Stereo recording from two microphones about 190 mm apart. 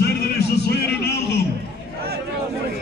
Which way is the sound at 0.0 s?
60° left (ahead or behind).